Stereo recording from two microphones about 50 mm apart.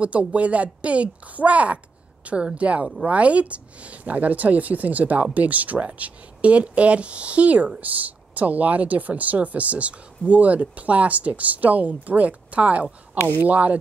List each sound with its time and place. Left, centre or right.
0.0 s a woman's voice: right